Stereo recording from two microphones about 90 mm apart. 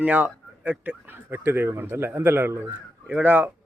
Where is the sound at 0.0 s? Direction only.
15° right (ahead or behind).